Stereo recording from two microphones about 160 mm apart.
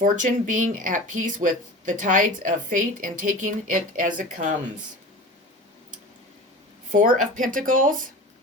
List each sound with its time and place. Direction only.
0.0 s speech: 55° right (ahead or behind)
6.9 s speech: 55° right (ahead or behind)